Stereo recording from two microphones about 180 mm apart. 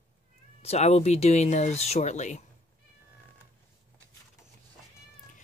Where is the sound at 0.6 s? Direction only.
35° left (ahead or behind).